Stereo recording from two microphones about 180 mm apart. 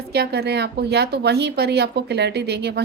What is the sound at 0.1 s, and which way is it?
Speech, 65° right (ahead or behind).